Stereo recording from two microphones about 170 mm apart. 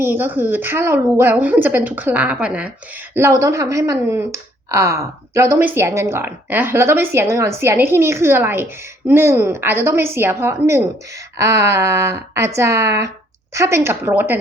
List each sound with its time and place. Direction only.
0.0 s speech: 10° right (ahead or behind)
3.2 s speech: 15° right (ahead or behind)